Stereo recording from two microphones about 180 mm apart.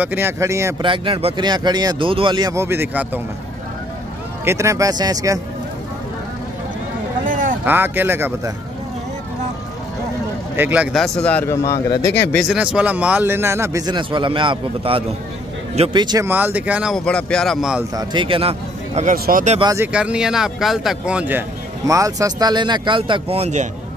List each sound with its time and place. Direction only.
0.0 s speech: 10° right (ahead or behind)
0.8 s speech: 30° right (ahead or behind); by 3.1 s 10° right (ahead or behind)
4.5 s speech: 15° right (ahead or behind)
7.2 s a sound: 50° right (ahead or behind)
7.6 s speech: 10° right (ahead or behind)
10.5 s a man's voice: 10° right (ahead or behind); by 12.1 s 15° left (ahead or behind)
12.4 s speech: 5° right (ahead or behind); by 16.3 s 25° right (ahead or behind)
16.3 s speech: 10° right (ahead or behind)
17.9 s speech: 25° right (ahead or behind)
19.1 s speech: 55° right (ahead or behind)
19.6 s speech: 15° right (ahead or behind)
19.9 s speech: 5° right (ahead or behind); by 23.7 s 40° right (ahead or behind)